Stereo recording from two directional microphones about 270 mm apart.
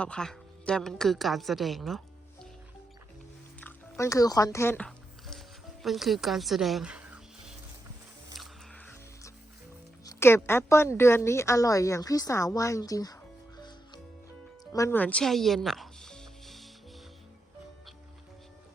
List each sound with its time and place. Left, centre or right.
0.0 s a woman's voice: centre
3.6 s a sound: centre
5.8 s speech: centre
8.4 s music: centre
10.0 s speech: centre
13.6 s music: centre